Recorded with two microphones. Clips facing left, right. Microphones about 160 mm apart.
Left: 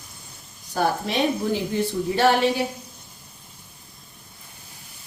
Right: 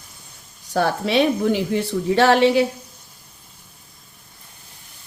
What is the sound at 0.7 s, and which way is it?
A woman's voice, 75° right (ahead or behind).